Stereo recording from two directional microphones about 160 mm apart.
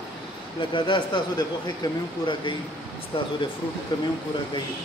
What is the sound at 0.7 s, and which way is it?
Speech, 30° left (ahead or behind).